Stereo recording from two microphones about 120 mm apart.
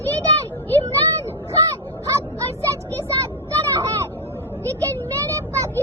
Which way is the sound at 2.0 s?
25° right (ahead or behind).